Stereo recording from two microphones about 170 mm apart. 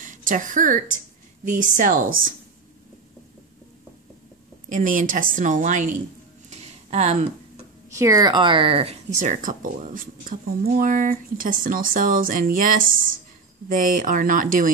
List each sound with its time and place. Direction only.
0.0 s a woman's voice: 50° right (ahead or behind)
4.6 s speech: 50° right (ahead or behind)
6.5 s a sound: 40° right (ahead or behind)
7.9 s speech: 20° right (ahead or behind); by 14.7 s 55° right (ahead or behind)